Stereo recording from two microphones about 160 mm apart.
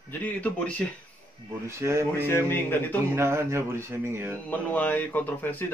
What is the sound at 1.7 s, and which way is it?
Speech, 15° right (ahead or behind).